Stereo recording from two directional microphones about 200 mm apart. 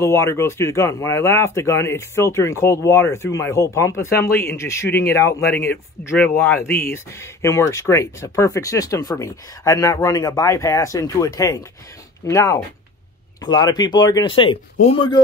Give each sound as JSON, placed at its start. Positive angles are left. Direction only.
{"t": 0.0, "sound": "speech", "side_deg": 15}